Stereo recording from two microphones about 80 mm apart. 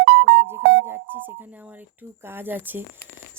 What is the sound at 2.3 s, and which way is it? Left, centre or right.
Speech, right.